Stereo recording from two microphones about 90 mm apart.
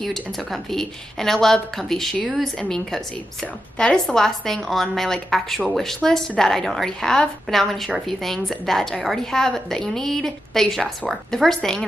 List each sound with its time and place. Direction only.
0.0 s a woman's voice: centre (ahead or behind)
3.7 s a woman's voice: 10° left (ahead or behind)